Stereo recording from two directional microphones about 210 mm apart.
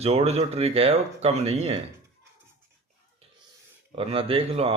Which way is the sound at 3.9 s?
25° right (ahead or behind).